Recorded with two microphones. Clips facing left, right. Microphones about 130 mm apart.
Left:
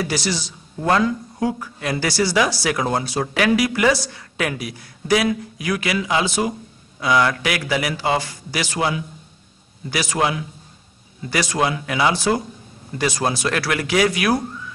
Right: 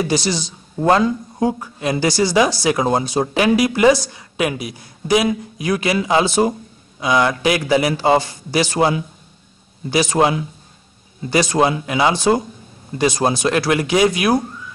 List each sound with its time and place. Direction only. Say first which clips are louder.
0.0 s a man's voice: right 4 dB; 20° right (ahead or behind)
7.0 s a man's voice: right 2 dB; 20° right (ahead or behind)